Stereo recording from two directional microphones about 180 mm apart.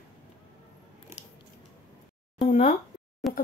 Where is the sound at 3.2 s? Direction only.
Centre (ahead or behind).